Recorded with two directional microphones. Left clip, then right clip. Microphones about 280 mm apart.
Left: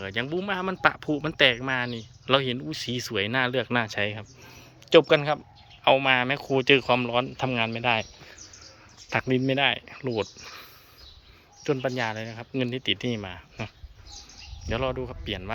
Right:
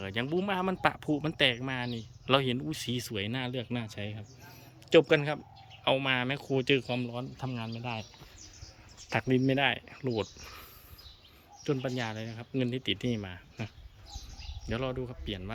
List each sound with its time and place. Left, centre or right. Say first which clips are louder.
0.0 s speech: left 3 dB; centre
7.1 s speech: left 13 dB; left
9.0 s speech: left 4 dB; centre
14.7 s speech: left 6 dB; centre